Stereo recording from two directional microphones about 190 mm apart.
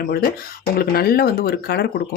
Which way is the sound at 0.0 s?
50° left (ahead or behind).